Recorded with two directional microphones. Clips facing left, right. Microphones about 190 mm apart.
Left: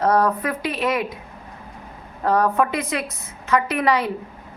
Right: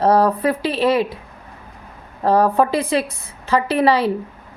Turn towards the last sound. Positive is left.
turn(degrees=-30)  # may be behind; listen again after turning